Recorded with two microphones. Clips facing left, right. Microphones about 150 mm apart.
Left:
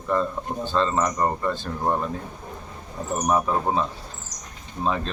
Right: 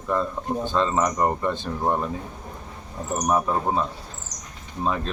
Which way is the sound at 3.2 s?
Centre (ahead or behind).